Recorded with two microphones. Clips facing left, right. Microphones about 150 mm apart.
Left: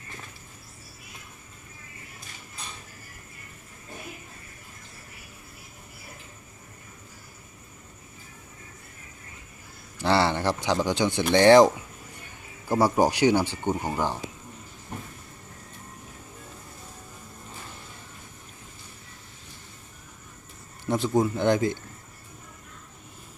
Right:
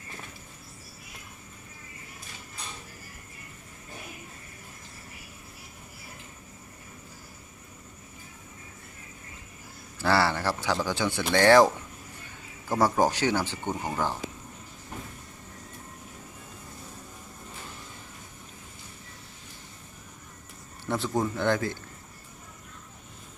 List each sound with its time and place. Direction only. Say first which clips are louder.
10.0 s speech: left 2 dB; 20° left (ahead or behind)
20.8 s speech: left 4 dB; 15° left (ahead or behind)